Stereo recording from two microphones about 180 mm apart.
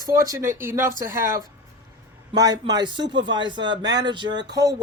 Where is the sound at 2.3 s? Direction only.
20° right (ahead or behind).